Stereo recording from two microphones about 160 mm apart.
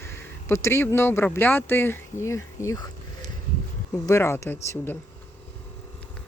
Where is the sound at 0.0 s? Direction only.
15° left (ahead or behind).